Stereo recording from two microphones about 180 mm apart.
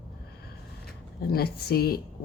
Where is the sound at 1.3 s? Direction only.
60° left (ahead or behind).